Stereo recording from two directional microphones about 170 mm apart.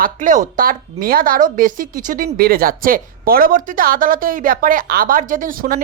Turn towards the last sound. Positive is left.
turn(degrees=-60)  # may be behind; listen again after turning